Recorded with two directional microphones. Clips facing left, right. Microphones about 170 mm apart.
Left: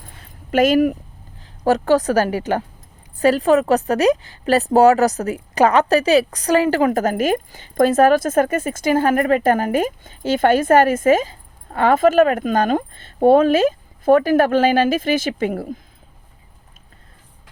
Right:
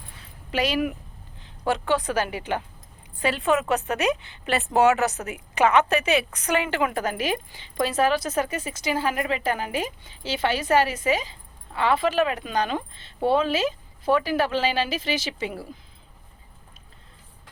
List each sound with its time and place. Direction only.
0.5 s a woman's voice: 45° left (ahead or behind)